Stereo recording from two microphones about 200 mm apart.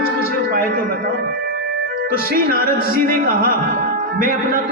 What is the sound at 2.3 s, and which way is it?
Speech, 45° right (ahead or behind).